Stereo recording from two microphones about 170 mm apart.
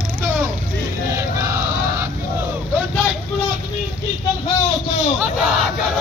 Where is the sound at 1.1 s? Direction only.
15° right (ahead or behind).